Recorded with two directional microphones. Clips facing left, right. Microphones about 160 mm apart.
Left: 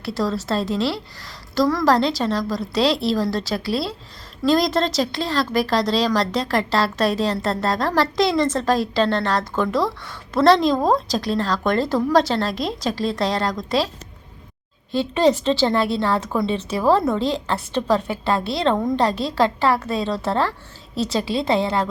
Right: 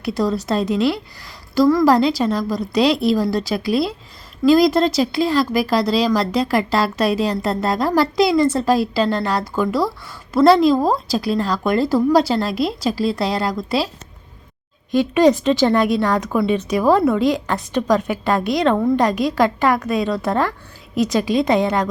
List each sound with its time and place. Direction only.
0.0 s speech: 15° right (ahead or behind)
14.9 s speech: 15° right (ahead or behind)